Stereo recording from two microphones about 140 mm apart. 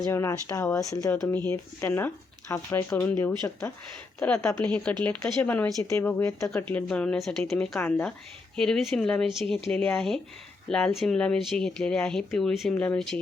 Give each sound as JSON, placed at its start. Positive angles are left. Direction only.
{"t": 0.0, "sound": "speech", "side_deg": 20}
{"t": 1.1, "sound": "speech", "side_deg": 10}
{"t": 4.4, "sound": "speech", "side_deg": 20}
{"t": 4.6, "sound": "speech", "side_deg": 5}